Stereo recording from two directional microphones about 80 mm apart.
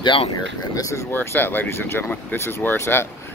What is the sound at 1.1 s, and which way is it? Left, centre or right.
Speech, left.